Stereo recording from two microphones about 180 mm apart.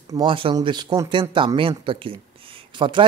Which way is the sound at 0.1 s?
25° right (ahead or behind).